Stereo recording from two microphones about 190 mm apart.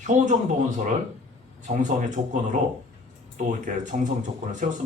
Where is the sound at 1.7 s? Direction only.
40° right (ahead or behind).